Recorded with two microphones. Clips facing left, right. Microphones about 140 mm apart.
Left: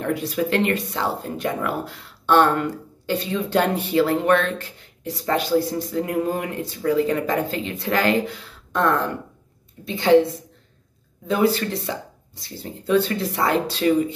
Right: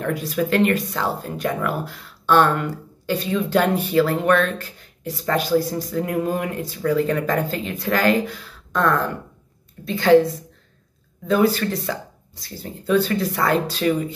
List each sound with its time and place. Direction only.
0.0 s speech: 30° left (ahead or behind)
11.2 s speech: 25° left (ahead or behind)